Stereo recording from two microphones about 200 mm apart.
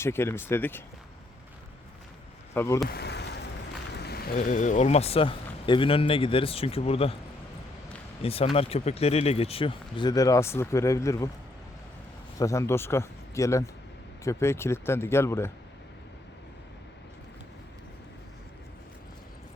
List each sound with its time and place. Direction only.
0.0 s speech: 10° left (ahead or behind)
2.6 s speech: 15° left (ahead or behind)
2.9 s a sound: 55° left (ahead or behind)
3.9 s speech: 55° left (ahead or behind); by 7.2 s 30° left (ahead or behind)
8.2 s speech: 30° left (ahead or behind)
12.4 s speech: 15° left (ahead or behind)